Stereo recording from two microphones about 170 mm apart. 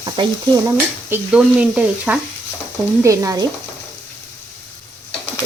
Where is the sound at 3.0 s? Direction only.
20° right (ahead or behind).